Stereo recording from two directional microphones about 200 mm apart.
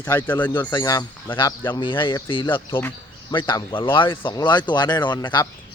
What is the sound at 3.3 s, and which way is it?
Speech, 20° left (ahead or behind).